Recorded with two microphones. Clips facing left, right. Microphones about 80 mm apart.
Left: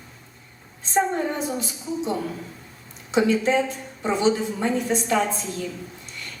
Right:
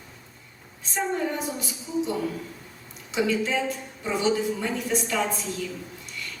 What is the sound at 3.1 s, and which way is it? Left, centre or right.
A woman's voice, left.